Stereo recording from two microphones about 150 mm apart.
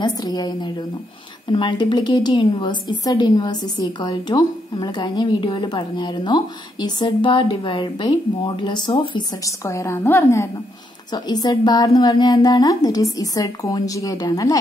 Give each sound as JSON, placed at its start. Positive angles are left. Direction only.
{"t": 0.0, "sound": "a woman's voice", "side_deg": 30}
{"t": 9.7, "sound": "a woman's voice", "side_deg": 20}
{"t": 11.2, "sound": "a woman's voice", "side_deg": 25}